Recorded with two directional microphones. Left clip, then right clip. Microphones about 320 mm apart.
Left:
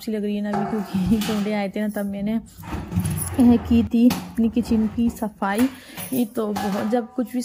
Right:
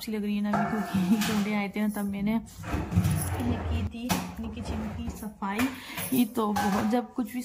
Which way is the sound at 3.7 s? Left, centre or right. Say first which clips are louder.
Left 13 dB; centre.